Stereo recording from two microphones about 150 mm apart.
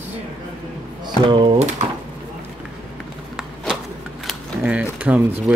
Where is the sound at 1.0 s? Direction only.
30° right (ahead or behind).